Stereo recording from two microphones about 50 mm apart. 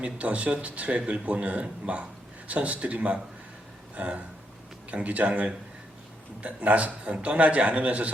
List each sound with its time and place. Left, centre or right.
0.0 s a man's voice: right
3.9 s a sound: right
4.9 s a man's voice: right